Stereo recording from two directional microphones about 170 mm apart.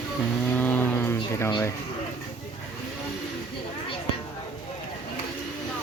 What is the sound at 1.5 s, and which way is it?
Speech, 25° left (ahead or behind).